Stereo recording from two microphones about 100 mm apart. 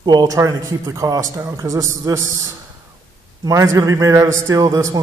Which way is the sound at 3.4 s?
30° right (ahead or behind).